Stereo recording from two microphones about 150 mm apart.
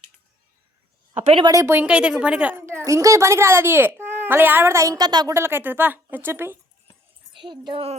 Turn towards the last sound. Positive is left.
turn(degrees=-35)  # may be behind; listen again after turning